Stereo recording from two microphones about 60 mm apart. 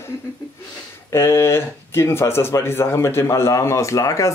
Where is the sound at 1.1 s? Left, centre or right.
Left.